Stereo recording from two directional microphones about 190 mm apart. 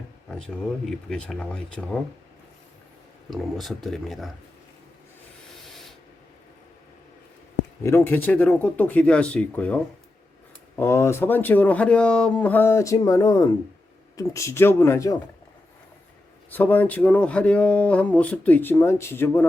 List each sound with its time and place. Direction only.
0.3 s speech: 5° left (ahead or behind)
3.2 s speech: centre (ahead or behind)
5.6 s a sound: centre (ahead or behind)
7.9 s speech: 10° left (ahead or behind)
16.5 s speech: 10° left (ahead or behind)